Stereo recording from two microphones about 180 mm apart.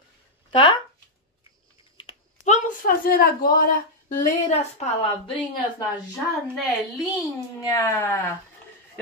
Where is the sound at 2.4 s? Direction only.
45° left (ahead or behind).